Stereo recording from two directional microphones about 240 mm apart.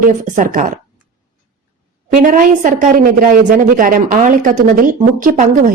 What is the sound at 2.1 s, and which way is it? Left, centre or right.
A woman's voice, right.